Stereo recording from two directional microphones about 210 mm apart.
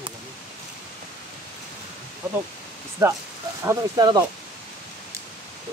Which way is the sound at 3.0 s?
10° right (ahead or behind).